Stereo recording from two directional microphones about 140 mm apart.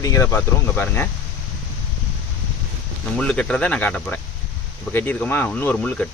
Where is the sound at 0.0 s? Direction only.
25° left (ahead or behind).